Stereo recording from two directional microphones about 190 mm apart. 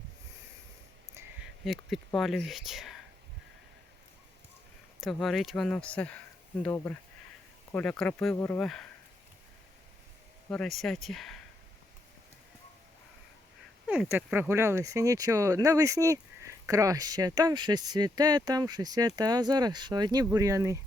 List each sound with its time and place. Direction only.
1.6 s speech: centre (ahead or behind)
4.9 s speech: centre (ahead or behind)
10.5 s speech: centre (ahead or behind)
13.8 s speech: 5° right (ahead or behind)